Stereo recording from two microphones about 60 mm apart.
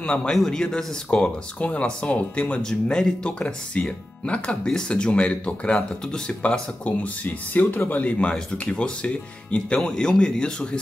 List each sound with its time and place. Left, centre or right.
0.0 s speech: centre
9.8 s speech: centre